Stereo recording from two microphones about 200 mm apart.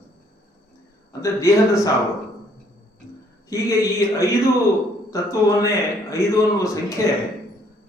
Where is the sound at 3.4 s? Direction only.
15° left (ahead or behind).